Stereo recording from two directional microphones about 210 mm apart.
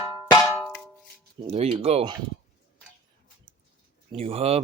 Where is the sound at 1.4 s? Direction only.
30° right (ahead or behind).